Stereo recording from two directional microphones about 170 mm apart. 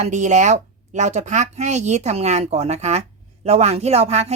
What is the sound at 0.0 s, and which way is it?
A woman's voice, 45° right (ahead or behind).